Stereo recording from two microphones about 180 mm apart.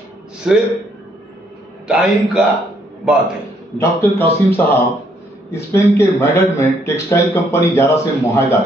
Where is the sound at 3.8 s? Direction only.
10° left (ahead or behind).